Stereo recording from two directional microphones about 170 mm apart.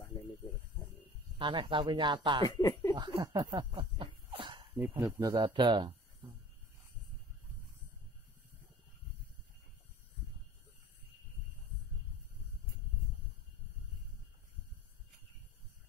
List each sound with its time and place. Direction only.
1.4 s speech: 30° right (ahead or behind)
2.4 s speech: 20° left (ahead or behind)
2.9 s speech: 30° right (ahead or behind)
3.5 s a sound: 30° right (ahead or behind)
4.7 s speech: 10° right (ahead or behind); by 5.9 s 30° right (ahead or behind)